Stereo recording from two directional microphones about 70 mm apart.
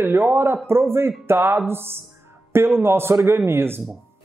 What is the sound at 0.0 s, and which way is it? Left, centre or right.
A woman's voice, right.